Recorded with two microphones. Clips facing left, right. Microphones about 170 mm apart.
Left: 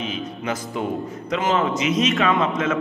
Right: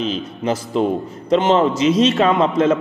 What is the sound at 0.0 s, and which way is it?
A man's voice, 30° right (ahead or behind).